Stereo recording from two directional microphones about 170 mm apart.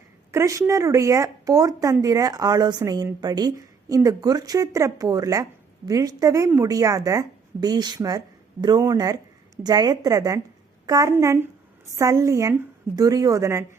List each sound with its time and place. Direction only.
0.3 s a woman's voice: 15° right (ahead or behind)